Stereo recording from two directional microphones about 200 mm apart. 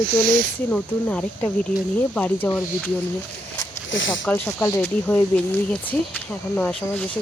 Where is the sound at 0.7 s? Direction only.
5° left (ahead or behind).